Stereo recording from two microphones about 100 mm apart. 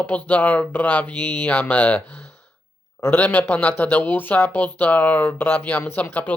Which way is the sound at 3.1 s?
15° left (ahead or behind).